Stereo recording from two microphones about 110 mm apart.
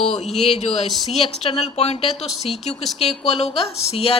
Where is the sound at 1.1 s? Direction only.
65° left (ahead or behind).